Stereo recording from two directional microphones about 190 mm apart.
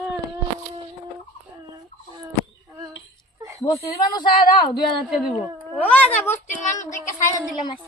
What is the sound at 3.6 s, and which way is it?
Speech, 20° left (ahead or behind).